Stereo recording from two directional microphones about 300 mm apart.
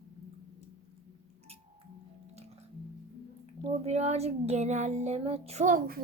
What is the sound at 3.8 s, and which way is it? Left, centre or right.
Child singing, right.